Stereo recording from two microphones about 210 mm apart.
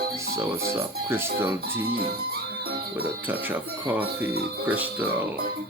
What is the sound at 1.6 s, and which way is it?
Music, 50° right (ahead or behind).